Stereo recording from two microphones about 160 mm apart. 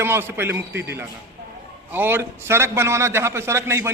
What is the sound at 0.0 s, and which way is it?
A man's voice, 15° right (ahead or behind).